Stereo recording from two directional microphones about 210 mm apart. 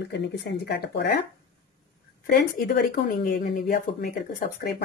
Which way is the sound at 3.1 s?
40° left (ahead or behind).